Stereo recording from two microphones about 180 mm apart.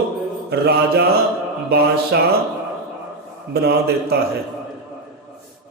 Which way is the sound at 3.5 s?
65° right (ahead or behind).